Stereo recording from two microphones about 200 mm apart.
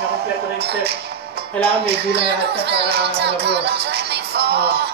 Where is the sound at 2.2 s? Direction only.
55° right (ahead or behind).